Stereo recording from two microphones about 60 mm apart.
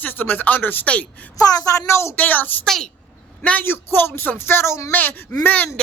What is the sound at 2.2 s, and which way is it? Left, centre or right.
Speech, left.